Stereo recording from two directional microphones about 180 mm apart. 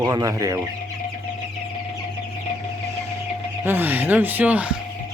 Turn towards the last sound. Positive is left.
turn(degrees=-10)  # may be behind; listen again after turning